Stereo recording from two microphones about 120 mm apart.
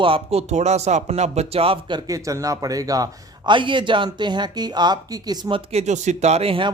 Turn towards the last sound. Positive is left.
turn(degrees=-50)  # may be behind; listen again after turning